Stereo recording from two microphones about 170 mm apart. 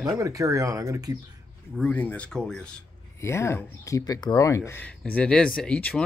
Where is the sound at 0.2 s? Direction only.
20° right (ahead or behind).